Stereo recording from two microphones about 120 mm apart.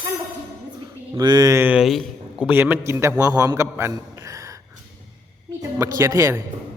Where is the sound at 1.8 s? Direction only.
Centre (ahead or behind).